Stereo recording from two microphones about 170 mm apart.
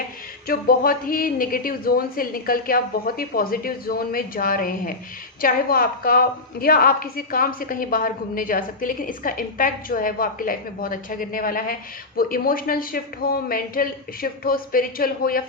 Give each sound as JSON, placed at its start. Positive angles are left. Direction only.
{"t": 0.4, "sound": "a woman's voice", "side_deg": 60}